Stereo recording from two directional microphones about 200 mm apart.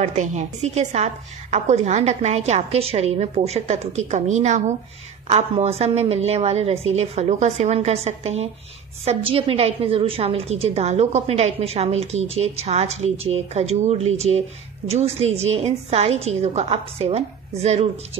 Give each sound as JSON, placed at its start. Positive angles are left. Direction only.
{"t": 0.0, "sound": "a woman's voice", "side_deg": -35}